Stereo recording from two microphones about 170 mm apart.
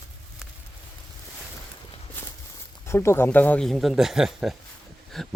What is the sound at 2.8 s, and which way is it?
Speech, 15° left (ahead or behind).